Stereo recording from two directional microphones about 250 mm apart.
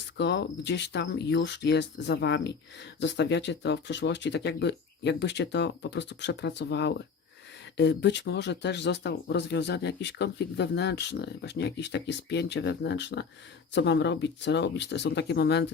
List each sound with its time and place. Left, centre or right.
0.2 s speech: left